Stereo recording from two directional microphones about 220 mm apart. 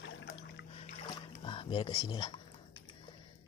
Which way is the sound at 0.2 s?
55° left (ahead or behind).